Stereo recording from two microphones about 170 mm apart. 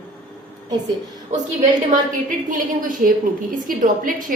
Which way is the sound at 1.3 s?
45° right (ahead or behind).